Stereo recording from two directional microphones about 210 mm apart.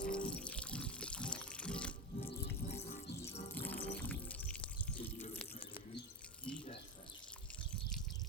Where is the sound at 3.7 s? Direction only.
50° left (ahead or behind).